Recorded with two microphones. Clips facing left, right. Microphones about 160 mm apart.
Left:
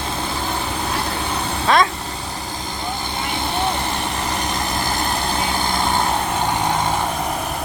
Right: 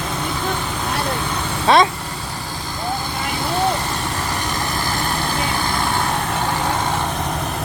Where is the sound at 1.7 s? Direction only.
20° right (ahead or behind).